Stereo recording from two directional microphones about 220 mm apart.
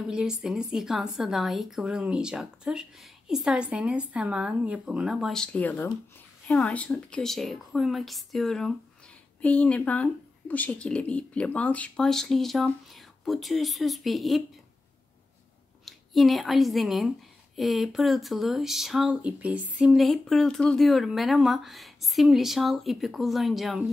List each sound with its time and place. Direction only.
0.1 s speech: 5° right (ahead or behind)
15.8 s speech: centre (ahead or behind)